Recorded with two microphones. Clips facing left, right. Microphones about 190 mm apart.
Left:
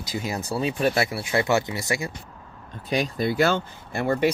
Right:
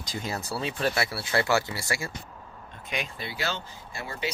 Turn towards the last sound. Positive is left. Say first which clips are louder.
# left 12 dB
turn(degrees=55)  # may be behind; listen again after turning